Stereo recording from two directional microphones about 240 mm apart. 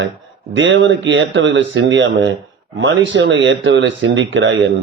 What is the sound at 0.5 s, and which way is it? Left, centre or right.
Speech, right.